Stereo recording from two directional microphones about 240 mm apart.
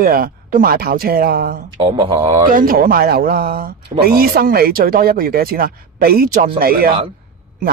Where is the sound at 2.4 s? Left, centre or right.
Right.